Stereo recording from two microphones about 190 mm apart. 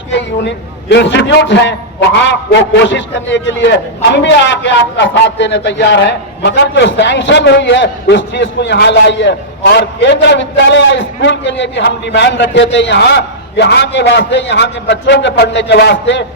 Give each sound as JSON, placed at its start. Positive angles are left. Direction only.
{"t": 0.1, "sound": "a man's voice", "side_deg": 70}